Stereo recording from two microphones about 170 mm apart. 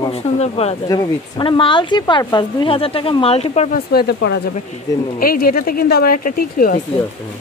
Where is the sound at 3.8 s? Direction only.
70° left (ahead or behind).